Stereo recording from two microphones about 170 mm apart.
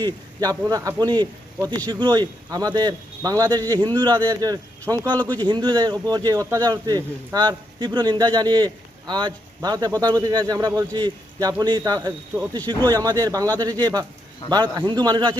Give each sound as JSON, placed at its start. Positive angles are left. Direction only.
{"t": 0.0, "sound": "speech", "side_deg": -20}
{"t": 5.1, "sound": "speech", "side_deg": 10}
{"t": 5.4, "sound": "speech", "side_deg": -25}